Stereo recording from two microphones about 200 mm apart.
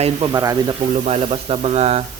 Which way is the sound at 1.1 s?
30° right (ahead or behind).